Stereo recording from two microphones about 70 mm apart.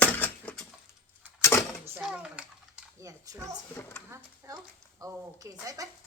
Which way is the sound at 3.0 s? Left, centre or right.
Right.